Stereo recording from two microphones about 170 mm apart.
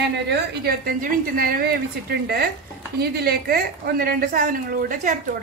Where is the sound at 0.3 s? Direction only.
60° right (ahead or behind).